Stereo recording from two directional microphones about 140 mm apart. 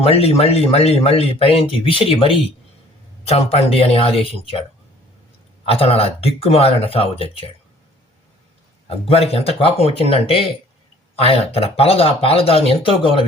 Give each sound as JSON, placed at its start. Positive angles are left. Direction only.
{"t": 0.0, "sound": "speech", "side_deg": 45}
{"t": 5.6, "sound": "speech", "side_deg": 45}
{"t": 9.0, "sound": "speech", "side_deg": 45}